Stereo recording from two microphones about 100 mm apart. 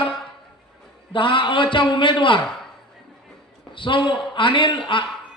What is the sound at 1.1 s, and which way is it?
A man's voice, 55° left (ahead or behind).